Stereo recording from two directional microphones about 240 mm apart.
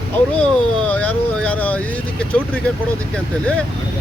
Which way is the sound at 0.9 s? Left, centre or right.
Centre.